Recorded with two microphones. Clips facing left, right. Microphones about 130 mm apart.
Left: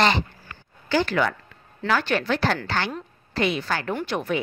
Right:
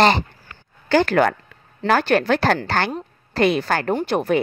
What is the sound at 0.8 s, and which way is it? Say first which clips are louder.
A woman's voice: right 6 dB; 55° right (ahead or behind).